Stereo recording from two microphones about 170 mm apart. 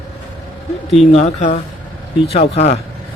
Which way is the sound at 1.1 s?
40° left (ahead or behind).